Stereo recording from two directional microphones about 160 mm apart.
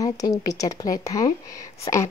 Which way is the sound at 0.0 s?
20° left (ahead or behind).